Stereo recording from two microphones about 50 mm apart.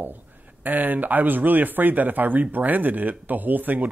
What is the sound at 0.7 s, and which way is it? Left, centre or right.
Speech, right.